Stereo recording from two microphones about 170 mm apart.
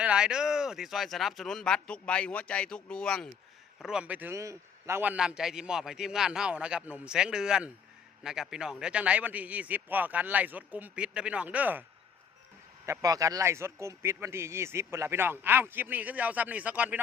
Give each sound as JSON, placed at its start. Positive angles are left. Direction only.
{"t": 0.0, "sound": "a man's voice", "side_deg": -5}